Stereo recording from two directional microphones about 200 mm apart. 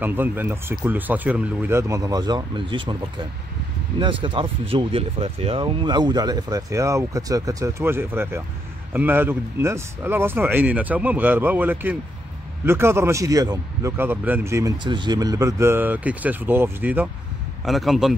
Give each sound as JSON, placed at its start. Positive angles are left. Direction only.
{"t": 0.0, "sound": "a man's voice", "side_deg": -10}